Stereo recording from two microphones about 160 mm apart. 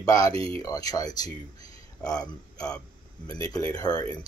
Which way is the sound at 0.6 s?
20° left (ahead or behind).